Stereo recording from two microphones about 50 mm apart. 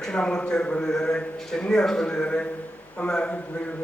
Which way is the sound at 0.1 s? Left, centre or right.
Centre.